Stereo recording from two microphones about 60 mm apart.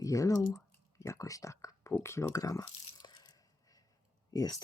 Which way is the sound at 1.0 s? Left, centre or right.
Left.